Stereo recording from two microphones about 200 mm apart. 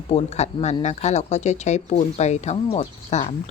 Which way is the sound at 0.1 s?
35° left (ahead or behind).